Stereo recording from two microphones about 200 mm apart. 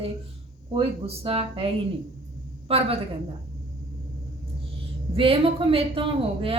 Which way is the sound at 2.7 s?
30° right (ahead or behind).